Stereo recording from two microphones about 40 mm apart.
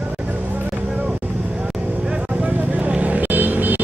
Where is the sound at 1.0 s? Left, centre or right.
Right.